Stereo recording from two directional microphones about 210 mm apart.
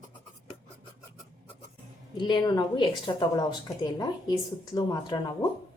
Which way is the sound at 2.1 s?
20° left (ahead or behind).